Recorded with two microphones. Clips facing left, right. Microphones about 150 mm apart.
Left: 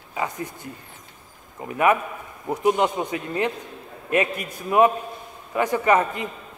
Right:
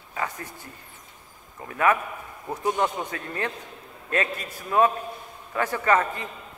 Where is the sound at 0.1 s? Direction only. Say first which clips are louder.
Left 4 dB; 15° left (ahead or behind).